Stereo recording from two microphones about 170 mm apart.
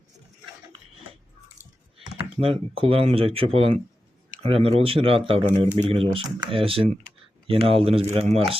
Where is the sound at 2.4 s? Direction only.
35° right (ahead or behind).